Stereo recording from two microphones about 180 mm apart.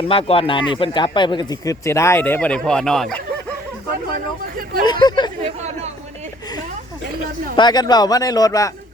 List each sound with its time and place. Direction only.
0.1 s speech: 30° left (ahead or behind); by 3.2 s 5° left (ahead or behind)
4.9 s speech: 25° left (ahead or behind)
5.4 s speech: 35° right (ahead or behind)
7.5 s speech: 25° left (ahead or behind)